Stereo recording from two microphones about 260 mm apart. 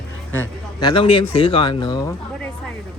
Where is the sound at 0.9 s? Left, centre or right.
Centre.